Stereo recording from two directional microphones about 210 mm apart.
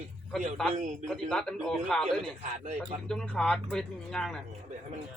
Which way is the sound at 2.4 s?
35° right (ahead or behind).